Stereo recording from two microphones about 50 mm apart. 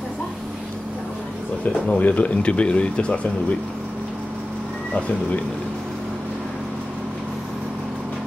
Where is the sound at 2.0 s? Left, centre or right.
Left.